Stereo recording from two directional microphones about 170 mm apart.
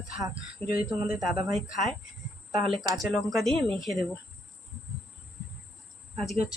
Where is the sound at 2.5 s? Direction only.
35° right (ahead or behind).